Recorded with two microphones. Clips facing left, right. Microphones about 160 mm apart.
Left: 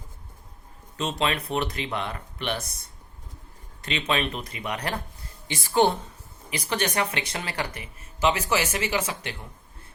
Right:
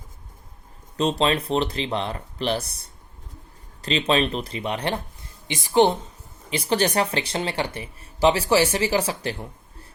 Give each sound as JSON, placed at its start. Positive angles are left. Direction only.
{"t": 0.9, "sound": "speech", "side_deg": -35}
{"t": 3.8, "sound": "speech", "side_deg": -30}
{"t": 5.5, "sound": "speech", "side_deg": -20}
{"t": 6.5, "sound": "speech", "side_deg": -30}